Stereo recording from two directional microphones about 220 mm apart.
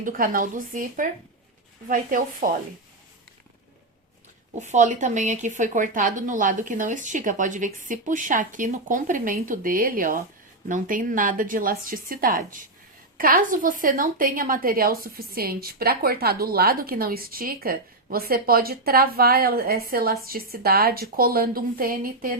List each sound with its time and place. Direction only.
0.0 s a woman's voice: 40° right (ahead or behind)
4.5 s a woman's voice: 30° right (ahead or behind)